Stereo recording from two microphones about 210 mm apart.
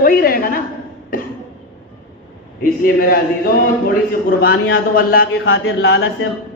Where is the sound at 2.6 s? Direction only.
45° left (ahead or behind).